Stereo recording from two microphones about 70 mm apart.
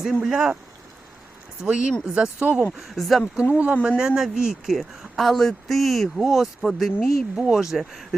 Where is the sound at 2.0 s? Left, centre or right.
Centre.